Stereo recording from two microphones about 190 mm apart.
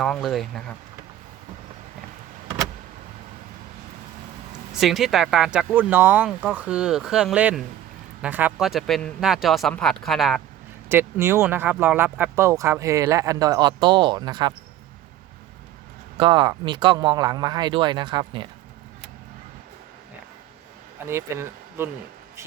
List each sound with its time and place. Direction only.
0.0 s speech: centre (ahead or behind)
4.7 s speech: centre (ahead or behind)
10.8 s speech: 10° right (ahead or behind)
16.1 s speech: 25° right (ahead or behind)
21.1 s speech: 15° right (ahead or behind)